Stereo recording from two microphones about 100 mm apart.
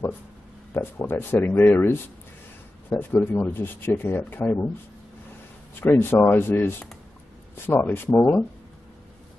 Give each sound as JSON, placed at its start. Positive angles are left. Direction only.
{"t": 0.7, "sound": "speech", "side_deg": 25}
{"t": 5.8, "sound": "speech", "side_deg": 20}